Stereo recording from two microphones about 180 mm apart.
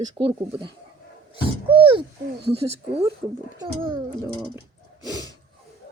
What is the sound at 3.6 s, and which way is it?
A child's voice, 20° right (ahead or behind).